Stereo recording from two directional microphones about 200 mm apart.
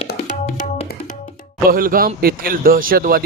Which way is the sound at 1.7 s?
45° right (ahead or behind).